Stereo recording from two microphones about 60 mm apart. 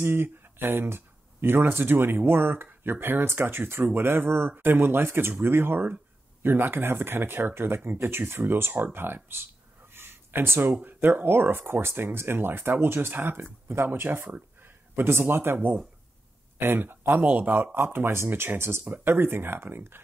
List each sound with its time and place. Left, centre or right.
0.0 s speech: right
9.9 s a sound: right
10.8 s a man's voice: right
17.2 s speech: right
17.7 s speech: right